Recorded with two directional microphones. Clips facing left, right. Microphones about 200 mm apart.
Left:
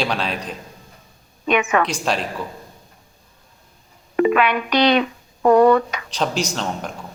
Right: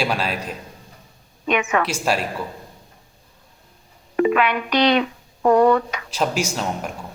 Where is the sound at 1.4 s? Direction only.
70° left (ahead or behind).